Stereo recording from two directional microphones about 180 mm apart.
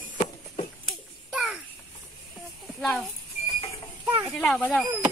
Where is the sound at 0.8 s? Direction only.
Centre (ahead or behind).